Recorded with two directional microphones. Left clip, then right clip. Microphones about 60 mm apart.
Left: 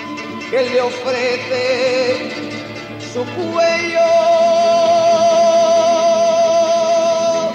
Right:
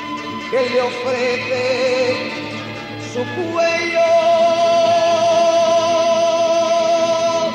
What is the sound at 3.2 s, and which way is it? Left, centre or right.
Music, left.